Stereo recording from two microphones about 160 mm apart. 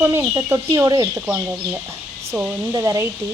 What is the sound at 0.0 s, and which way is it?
Speech, 15° right (ahead or behind).